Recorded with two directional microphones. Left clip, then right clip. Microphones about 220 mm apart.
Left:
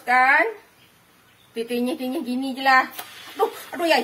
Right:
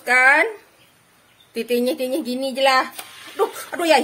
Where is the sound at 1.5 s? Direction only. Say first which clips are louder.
Right 5 dB; 50° right (ahead or behind).